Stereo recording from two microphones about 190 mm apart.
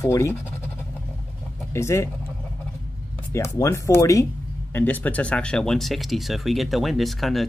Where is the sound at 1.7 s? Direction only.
15° left (ahead or behind).